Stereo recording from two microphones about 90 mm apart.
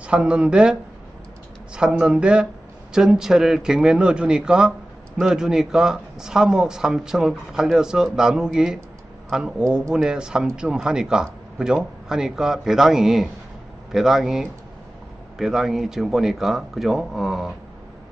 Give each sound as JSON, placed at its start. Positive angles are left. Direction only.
{"t": 0.0, "sound": "speech", "side_deg": -10}
{"t": 1.8, "sound": "a man's voice", "side_deg": -10}